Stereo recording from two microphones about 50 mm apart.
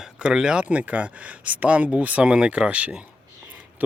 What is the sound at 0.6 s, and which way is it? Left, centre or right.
Speech, right.